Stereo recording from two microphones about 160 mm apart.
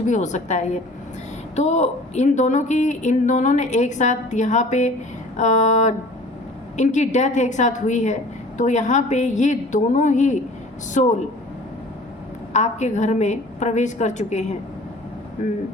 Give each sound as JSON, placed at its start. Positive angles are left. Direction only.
{"t": 0.0, "sound": "a woman's voice", "side_deg": 45}
{"t": 12.5, "sound": "a woman's voice", "side_deg": 45}